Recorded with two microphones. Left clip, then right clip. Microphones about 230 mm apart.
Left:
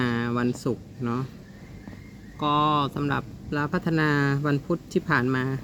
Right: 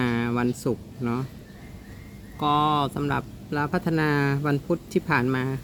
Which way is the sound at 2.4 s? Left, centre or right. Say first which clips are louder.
Right 1 dB; centre.